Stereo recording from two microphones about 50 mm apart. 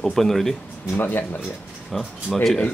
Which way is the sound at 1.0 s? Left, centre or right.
Left.